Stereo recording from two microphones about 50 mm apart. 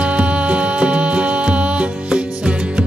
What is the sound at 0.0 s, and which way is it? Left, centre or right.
Music, right.